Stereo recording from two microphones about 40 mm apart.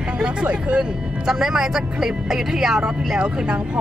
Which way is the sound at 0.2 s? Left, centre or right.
Right.